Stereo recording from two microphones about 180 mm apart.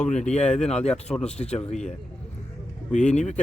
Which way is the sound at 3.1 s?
40° left (ahead or behind).